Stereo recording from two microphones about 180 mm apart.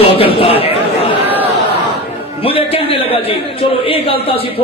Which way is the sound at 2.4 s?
30° left (ahead or behind).